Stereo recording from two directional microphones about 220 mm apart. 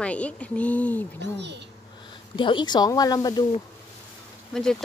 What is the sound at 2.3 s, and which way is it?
Speech, 20° left (ahead or behind).